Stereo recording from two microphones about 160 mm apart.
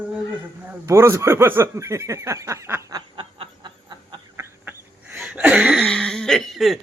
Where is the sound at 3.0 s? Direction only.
30° right (ahead or behind).